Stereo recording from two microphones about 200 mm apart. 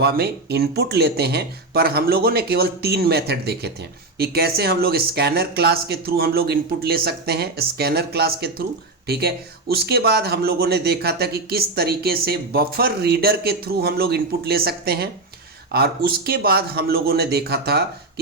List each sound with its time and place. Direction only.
0.0 s a man's voice: 50° right (ahead or behind)